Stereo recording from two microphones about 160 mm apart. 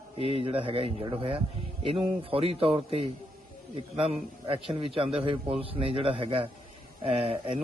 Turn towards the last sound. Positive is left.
turn(degrees=-35)  # may be behind; listen again after turning